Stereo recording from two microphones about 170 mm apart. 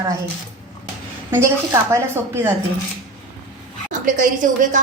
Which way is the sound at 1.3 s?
15° right (ahead or behind).